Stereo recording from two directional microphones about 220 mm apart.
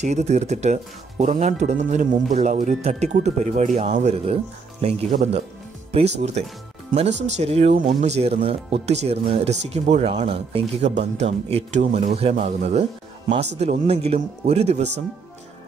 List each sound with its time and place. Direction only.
0.0 s speech: 30° right (ahead or behind)
5.9 s music: 30° right (ahead or behind)
6.4 s speech: 30° right (ahead or behind)